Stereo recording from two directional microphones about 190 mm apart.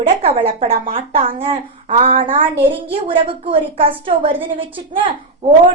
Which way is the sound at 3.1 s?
30° right (ahead or behind).